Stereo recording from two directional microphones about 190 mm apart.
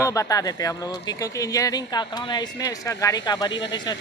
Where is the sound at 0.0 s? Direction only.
15° left (ahead or behind).